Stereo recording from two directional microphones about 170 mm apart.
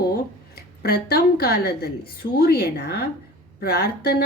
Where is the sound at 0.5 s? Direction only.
70° left (ahead or behind).